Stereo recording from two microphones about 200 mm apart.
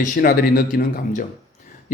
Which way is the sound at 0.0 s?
45° left (ahead or behind).